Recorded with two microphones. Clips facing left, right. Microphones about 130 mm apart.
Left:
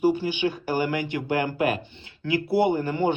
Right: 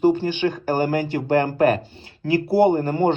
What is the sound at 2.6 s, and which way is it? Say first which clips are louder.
Speech: right 6 dB; 45° right (ahead or behind).